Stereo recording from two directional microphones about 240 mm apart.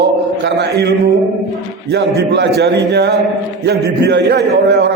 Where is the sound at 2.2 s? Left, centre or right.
Right.